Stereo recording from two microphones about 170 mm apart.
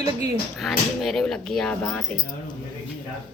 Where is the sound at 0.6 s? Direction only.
Centre (ahead or behind).